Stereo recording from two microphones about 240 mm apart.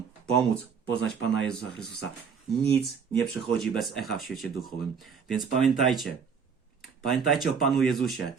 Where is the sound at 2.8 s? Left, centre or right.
Centre.